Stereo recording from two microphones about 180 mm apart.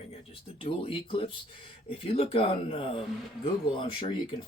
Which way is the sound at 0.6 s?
30° left (ahead or behind).